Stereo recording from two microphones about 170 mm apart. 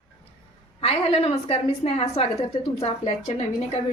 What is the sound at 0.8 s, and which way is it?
Speech, 35° left (ahead or behind).